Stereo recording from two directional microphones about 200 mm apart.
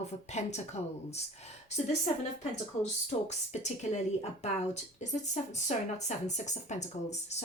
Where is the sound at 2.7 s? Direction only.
35° left (ahead or behind).